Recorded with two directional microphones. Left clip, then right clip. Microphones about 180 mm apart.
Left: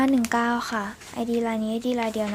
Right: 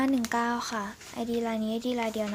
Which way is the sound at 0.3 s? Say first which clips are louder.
Left 5 dB; centre (ahead or behind).